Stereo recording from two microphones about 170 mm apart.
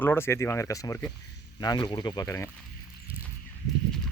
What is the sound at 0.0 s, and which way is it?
Speech, 15° left (ahead or behind).